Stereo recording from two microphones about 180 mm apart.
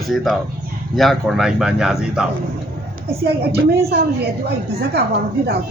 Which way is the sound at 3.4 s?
60° right (ahead or behind).